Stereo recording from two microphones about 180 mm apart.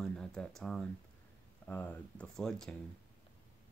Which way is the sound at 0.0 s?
5° left (ahead or behind).